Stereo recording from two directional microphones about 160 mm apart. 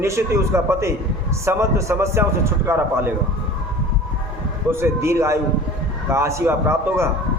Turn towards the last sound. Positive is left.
turn(degrees=-15)  # may be behind; listen again after turning